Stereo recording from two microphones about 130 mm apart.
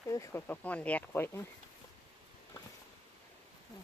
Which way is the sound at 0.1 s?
25° left (ahead or behind).